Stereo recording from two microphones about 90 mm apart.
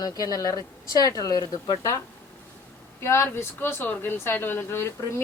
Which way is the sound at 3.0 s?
30° left (ahead or behind).